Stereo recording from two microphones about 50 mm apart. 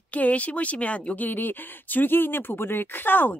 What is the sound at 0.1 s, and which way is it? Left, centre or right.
Speech, left.